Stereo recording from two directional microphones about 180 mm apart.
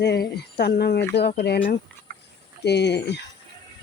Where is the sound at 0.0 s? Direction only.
65° left (ahead or behind).